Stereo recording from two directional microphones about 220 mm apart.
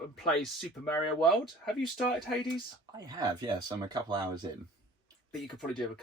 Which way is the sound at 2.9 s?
20° right (ahead or behind).